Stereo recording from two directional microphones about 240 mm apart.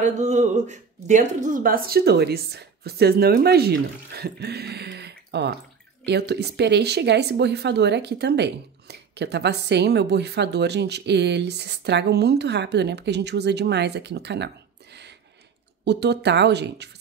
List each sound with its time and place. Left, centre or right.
0.0 s speech: right